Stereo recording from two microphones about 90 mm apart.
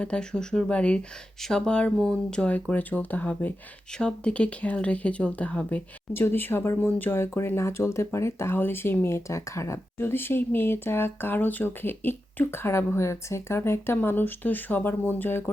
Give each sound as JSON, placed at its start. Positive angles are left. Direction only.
{"t": 0.0, "sound": "speech", "side_deg": 10}
{"t": 6.1, "sound": "speech", "side_deg": 25}